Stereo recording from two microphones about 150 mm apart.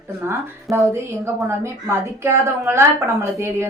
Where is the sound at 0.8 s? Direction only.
20° right (ahead or behind).